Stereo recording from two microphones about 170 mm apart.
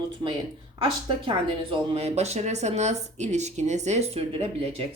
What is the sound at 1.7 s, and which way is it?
Speech, 40° right (ahead or behind).